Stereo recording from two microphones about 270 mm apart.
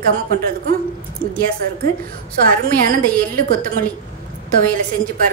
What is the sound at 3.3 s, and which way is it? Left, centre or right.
A woman's voice, right.